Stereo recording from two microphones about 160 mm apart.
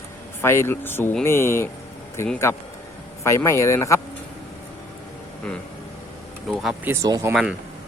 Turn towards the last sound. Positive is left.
turn(degrees=-5)  # may be behind; listen again after turning